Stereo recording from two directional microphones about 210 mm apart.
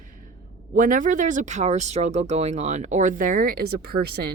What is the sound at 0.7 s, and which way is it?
Speech, 40° right (ahead or behind).